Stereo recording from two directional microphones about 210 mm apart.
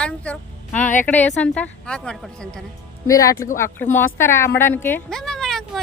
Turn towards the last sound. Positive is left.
turn(degrees=0)  # may be behind; listen again after turning